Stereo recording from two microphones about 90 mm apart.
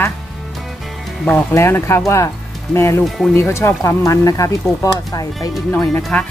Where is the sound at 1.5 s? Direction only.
30° left (ahead or behind).